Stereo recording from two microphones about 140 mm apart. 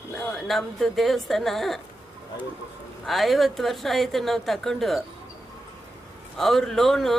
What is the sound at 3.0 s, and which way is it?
Speech, centre (ahead or behind).